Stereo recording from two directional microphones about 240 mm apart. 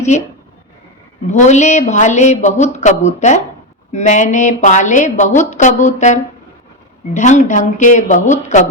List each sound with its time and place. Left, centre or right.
0.1 s a woman's voice: left
1.3 s a woman's voice: left